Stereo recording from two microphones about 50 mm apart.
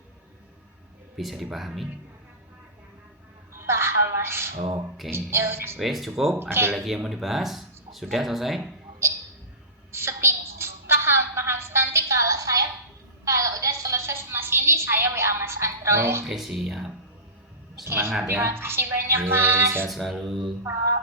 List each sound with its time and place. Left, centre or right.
1.1 s speech: centre
3.5 s a sound: right
5.1 s music: right
5.8 s speech: centre
6.4 s speech: right
6.7 s speech: centre
9.9 s a sound: right
15.1 s music: right
16.2 s speech: centre
17.8 s a woman's voice: right
19.9 s speech: centre